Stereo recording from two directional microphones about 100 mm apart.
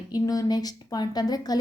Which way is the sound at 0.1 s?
40° left (ahead or behind).